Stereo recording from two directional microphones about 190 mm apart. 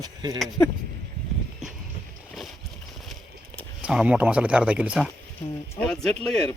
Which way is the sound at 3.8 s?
5° right (ahead or behind).